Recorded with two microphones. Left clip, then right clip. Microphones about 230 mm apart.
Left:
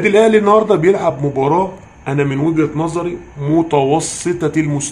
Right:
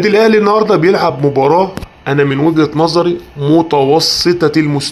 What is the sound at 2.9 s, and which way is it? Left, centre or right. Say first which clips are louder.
Speech: right 8 dB; right.